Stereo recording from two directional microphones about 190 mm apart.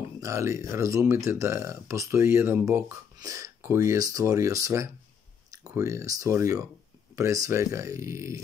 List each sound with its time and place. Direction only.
0.2 s speech: 15° right (ahead or behind)